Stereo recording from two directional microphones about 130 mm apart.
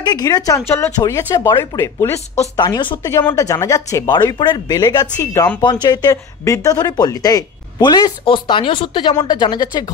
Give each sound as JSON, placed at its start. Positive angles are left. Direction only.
{"t": 0.0, "sound": "speech", "side_deg": 30}
{"t": 2.6, "sound": "speech", "side_deg": 35}
{"t": 3.1, "sound": "speech", "side_deg": 20}